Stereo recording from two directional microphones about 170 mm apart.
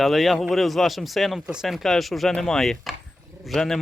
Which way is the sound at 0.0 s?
Centre (ahead or behind).